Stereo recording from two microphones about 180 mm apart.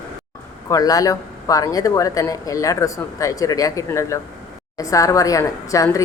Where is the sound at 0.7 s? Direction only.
20° left (ahead or behind).